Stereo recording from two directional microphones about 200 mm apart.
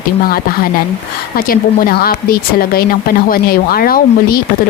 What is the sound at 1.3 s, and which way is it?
Speech, 45° left (ahead or behind).